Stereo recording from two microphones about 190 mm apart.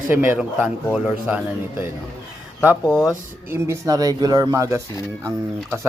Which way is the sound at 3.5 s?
15° right (ahead or behind).